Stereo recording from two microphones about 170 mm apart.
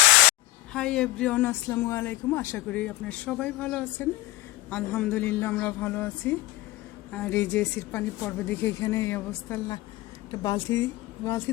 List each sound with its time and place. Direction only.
0.7 s speech: 5° left (ahead or behind)